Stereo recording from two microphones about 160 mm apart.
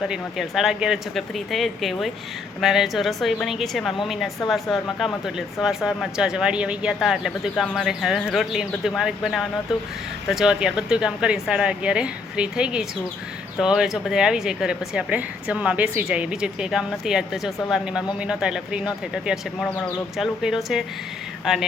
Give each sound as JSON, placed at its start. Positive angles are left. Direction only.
{"t": 0.0, "sound": "a woman's voice", "side_deg": 0}